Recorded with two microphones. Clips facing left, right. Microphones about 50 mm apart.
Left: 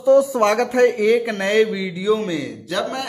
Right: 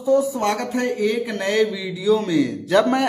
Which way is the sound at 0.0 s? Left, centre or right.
Left.